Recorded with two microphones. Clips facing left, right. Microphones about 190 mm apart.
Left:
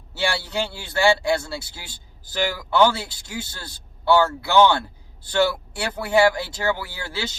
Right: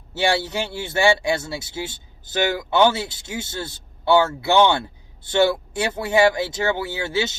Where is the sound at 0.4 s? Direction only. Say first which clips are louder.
Right 1 dB; 20° right (ahead or behind).